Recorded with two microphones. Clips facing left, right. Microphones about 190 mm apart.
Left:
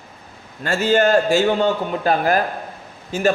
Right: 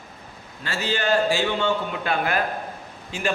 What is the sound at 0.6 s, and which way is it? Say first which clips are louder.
A man's voice: left 10 dB; 45° left (ahead or behind).